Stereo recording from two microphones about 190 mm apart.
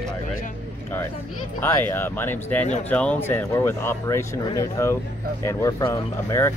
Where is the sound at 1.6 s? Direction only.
10° left (ahead or behind).